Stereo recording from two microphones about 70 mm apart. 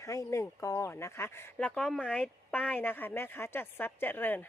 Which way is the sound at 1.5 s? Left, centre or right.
Centre.